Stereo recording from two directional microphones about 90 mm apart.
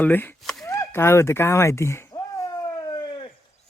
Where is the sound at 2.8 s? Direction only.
60° left (ahead or behind).